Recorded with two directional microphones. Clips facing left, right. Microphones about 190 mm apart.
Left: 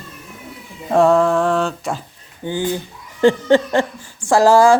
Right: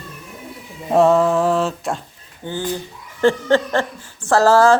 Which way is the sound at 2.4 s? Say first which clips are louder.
Left 3 dB; 15° left (ahead or behind).